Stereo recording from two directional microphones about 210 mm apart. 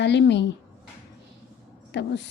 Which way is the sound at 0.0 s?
55° left (ahead or behind).